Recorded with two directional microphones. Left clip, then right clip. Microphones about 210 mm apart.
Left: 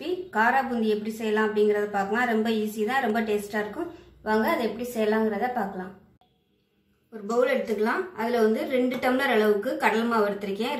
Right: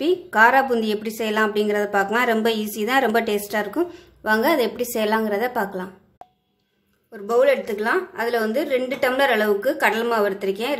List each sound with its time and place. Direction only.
0.0 s a woman's voice: 50° right (ahead or behind)
7.2 s a woman's voice: 50° right (ahead or behind)